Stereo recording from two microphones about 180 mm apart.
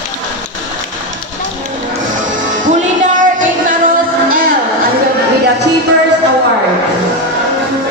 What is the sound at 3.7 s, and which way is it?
Music, 50° right (ahead or behind).